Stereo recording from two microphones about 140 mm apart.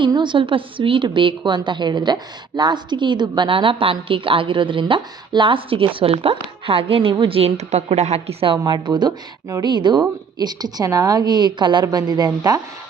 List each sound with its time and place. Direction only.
0.0 s a woman's voice: 35° right (ahead or behind)
8.6 s speech: 30° right (ahead or behind)